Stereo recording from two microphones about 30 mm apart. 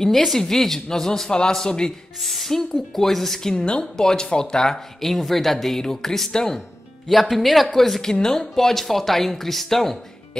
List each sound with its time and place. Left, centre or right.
0.0 s speech: centre; by 1.9 s left
2.1 s speech: centre
3.5 s a woman's voice: left
3.8 s speech: left
4.7 s speech: centre
7.1 s speech: centre
8.0 s speech: left